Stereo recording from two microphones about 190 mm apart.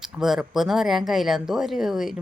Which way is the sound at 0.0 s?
Centre (ahead or behind).